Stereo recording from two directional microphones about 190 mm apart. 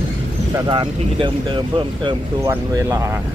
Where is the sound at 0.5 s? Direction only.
25° right (ahead or behind).